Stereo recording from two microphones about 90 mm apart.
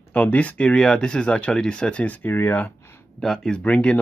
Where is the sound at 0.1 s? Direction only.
15° left (ahead or behind).